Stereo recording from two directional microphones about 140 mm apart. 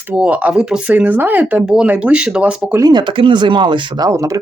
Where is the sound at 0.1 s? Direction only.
10° right (ahead or behind).